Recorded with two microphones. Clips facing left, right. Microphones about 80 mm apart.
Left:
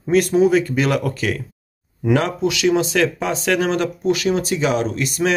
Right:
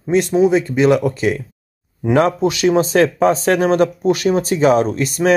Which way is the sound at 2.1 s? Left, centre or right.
Right.